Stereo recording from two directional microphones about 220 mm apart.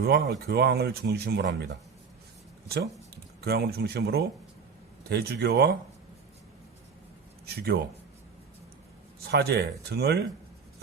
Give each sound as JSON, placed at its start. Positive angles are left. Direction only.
{"t": 0.0, "sound": "speech", "side_deg": -45}
{"t": 7.4, "sound": "speech", "side_deg": -45}
{"t": 9.2, "sound": "speech", "side_deg": -50}